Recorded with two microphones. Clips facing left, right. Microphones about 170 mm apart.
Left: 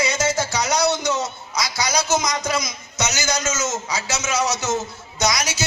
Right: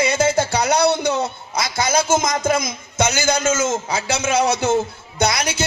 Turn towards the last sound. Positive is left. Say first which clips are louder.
# right 3 dB
turn(degrees=-55)  # may be behind; listen again after turning